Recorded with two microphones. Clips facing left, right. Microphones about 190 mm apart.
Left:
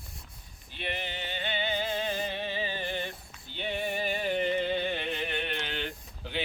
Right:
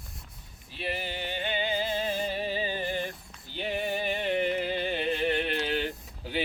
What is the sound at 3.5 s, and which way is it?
Music, 5° right (ahead or behind).